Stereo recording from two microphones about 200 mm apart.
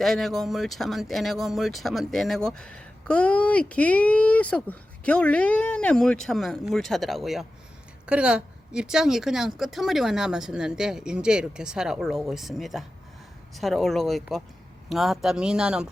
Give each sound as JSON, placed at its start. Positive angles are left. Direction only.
{"t": 0.0, "sound": "speech", "side_deg": 0}